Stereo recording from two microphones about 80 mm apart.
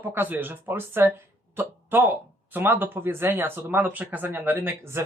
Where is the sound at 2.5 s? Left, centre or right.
Right.